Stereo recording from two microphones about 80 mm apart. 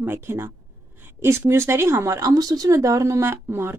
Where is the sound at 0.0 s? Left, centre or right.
Right.